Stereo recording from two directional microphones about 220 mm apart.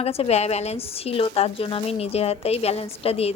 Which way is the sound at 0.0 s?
25° left (ahead or behind).